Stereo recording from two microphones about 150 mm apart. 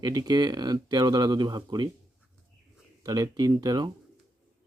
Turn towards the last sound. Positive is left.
turn(degrees=-25)  # may be behind; listen again after turning